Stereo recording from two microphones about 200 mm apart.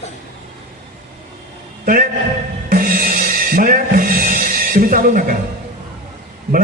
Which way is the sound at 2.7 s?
45° right (ahead or behind).